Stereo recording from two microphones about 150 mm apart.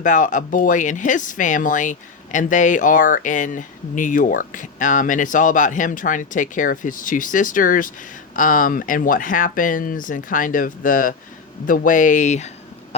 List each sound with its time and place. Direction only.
0.0 s speech: 60° left (ahead or behind)